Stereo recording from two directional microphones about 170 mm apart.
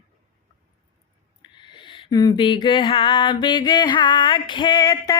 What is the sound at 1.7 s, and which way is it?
A woman's voice, 30° left (ahead or behind).